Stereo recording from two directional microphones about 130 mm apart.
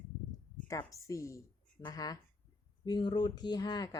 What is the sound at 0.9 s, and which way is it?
A woman's voice, 25° left (ahead or behind).